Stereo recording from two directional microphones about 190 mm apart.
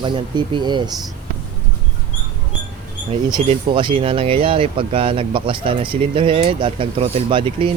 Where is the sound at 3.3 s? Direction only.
25° right (ahead or behind).